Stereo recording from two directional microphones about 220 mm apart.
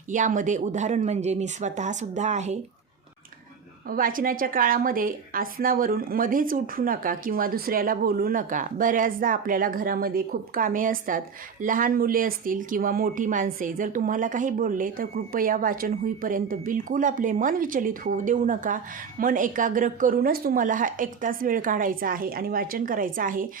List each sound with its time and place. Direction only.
0.1 s speech: 35° right (ahead or behind)
3.8 s speech: 40° right (ahead or behind)